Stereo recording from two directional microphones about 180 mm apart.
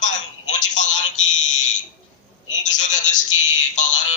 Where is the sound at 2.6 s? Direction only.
45° left (ahead or behind).